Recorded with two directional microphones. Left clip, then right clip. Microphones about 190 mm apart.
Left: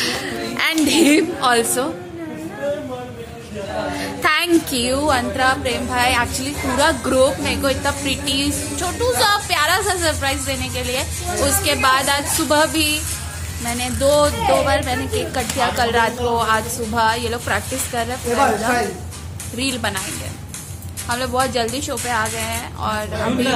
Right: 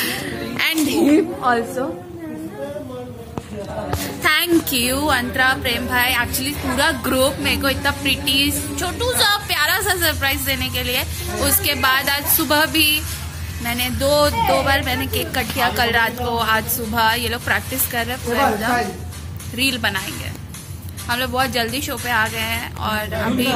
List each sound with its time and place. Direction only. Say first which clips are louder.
0.0 s music: left 2 dB; 5° left (ahead or behind)
1.1 s a woman's voice: left 1 dB; 60° left (ahead or behind)
4.0 s a woman's voice: even; centre (ahead or behind)
21.1 s a woman's voice: even; 10° right (ahead or behind)